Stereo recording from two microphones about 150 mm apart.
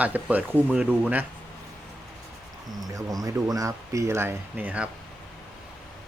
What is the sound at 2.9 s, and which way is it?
Speech, 25° right (ahead or behind).